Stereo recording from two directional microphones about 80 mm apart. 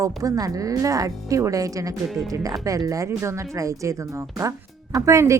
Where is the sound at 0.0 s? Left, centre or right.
Right.